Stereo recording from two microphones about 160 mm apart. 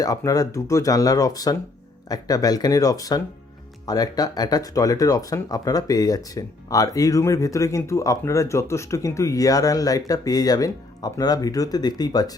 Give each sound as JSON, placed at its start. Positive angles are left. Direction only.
{"t": 0.0, "sound": "speech", "side_deg": 20}